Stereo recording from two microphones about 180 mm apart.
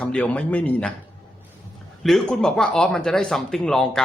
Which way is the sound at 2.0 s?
5° left (ahead or behind).